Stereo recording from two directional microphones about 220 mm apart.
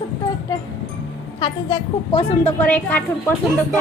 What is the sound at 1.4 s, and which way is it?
Speech, 20° left (ahead or behind).